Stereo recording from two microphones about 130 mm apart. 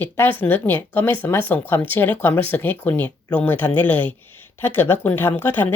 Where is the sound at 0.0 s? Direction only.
15° left (ahead or behind).